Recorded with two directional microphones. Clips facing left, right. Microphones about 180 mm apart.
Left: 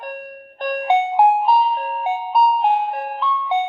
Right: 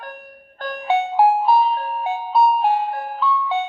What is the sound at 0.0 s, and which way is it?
Music, 20° left (ahead or behind).